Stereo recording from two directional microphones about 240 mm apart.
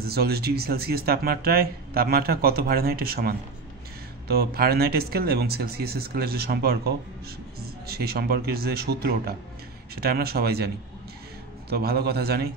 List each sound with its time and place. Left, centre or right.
0.0 s speech: right
11.7 s speech: right